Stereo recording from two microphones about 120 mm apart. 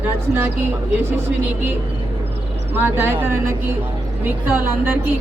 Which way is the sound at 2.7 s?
20° right (ahead or behind).